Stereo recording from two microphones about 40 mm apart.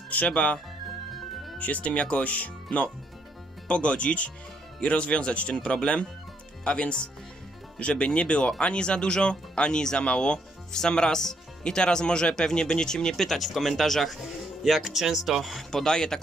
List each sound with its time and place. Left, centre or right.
0.1 s speech: left
1.6 s speech: left; by 14.1 s centre
14.6 s speech: centre
15.7 s speech: centre